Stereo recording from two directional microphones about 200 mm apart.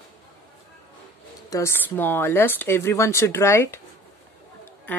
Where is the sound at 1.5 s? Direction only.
15° left (ahead or behind).